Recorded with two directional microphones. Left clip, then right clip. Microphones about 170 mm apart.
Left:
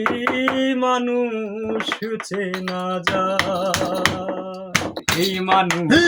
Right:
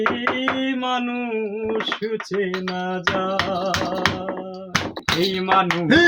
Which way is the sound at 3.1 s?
45° left (ahead or behind).